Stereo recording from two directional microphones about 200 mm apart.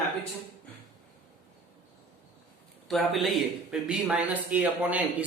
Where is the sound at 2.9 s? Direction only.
Centre (ahead or behind).